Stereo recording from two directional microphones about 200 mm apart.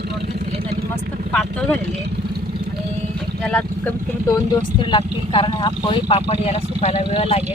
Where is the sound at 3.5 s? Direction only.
5° left (ahead or behind).